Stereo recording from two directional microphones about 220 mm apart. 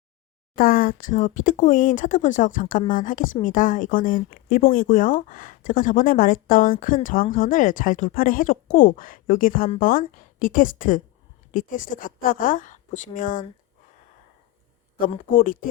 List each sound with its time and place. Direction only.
0.5 s speech: 40° left (ahead or behind)
15.3 s speech: 40° left (ahead or behind)